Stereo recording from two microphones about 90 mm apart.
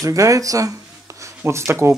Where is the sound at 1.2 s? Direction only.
30° right (ahead or behind).